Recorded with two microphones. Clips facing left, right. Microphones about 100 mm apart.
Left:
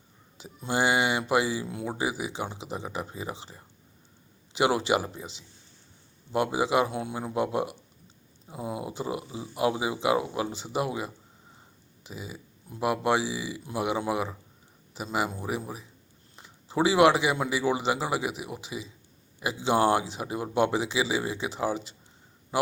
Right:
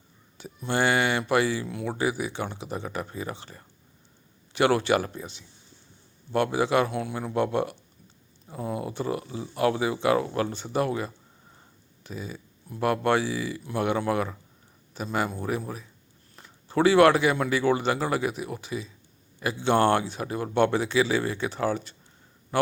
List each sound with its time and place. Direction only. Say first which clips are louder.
0.3 s speech: right 1 dB; 20° left (ahead or behind)
1.6 s speech: right 3 dB; 25° left (ahead or behind)
6.3 s speech: right 2 dB; 15° left (ahead or behind)